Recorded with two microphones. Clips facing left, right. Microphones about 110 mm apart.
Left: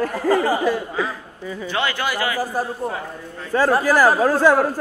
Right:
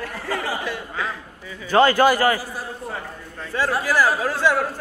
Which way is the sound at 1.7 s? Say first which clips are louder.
Right 9 dB; 40° right (ahead or behind).